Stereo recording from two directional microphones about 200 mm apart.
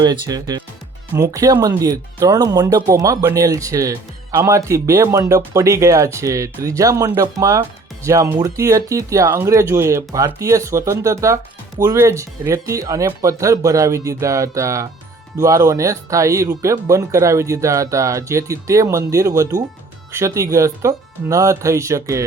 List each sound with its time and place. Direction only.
0.0 s speech: 20° right (ahead or behind)